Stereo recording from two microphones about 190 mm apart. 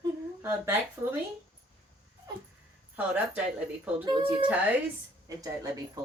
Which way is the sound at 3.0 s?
5° right (ahead or behind).